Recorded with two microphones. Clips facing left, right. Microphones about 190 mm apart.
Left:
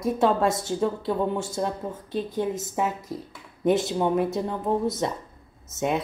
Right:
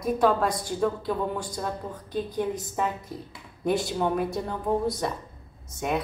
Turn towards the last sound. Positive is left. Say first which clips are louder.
# left 2 dB
turn(degrees=25)  # may be behind; listen again after turning